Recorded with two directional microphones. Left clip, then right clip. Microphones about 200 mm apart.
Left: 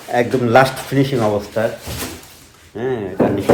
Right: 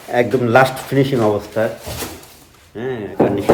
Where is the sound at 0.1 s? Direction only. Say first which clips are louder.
Even; 15° right (ahead or behind).